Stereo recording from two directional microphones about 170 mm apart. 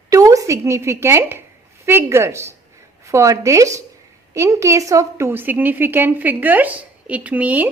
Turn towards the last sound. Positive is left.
turn(degrees=-10)  # may be behind; listen again after turning